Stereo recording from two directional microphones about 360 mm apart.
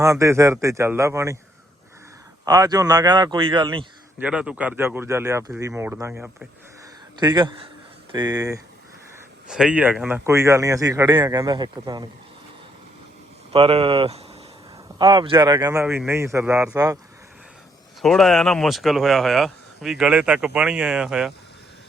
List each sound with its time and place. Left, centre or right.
0.0 s a man's voice: centre
2.4 s a man's voice: centre
13.5 s a man's voice: centre
18.0 s speech: centre